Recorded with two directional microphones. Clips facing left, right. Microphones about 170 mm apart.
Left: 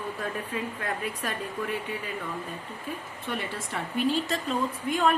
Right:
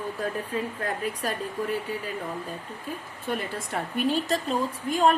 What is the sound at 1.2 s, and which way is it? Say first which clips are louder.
Speech: right 4 dB; 40° right (ahead or behind).